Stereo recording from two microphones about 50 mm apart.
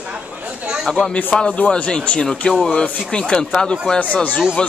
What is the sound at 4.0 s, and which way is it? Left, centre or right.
Speech, left.